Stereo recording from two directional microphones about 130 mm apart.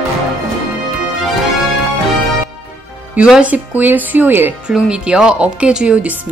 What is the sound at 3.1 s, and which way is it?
Speech, 10° right (ahead or behind).